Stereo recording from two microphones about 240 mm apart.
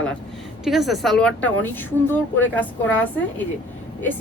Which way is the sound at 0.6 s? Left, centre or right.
Centre.